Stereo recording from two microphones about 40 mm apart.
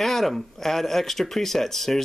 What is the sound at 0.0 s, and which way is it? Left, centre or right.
Speech, centre.